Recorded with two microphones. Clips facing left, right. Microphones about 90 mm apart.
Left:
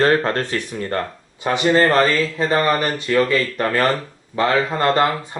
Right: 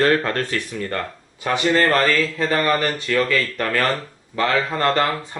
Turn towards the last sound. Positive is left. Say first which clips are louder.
# left 2 dB
turn(degrees=20)  # may be behind; listen again after turning